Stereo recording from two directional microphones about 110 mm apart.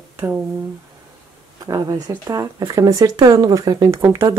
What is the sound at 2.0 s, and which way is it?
Speech, 30° right (ahead or behind).